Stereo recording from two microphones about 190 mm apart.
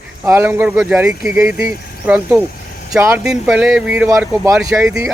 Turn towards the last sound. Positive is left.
turn(degrees=-5)  # may be behind; listen again after turning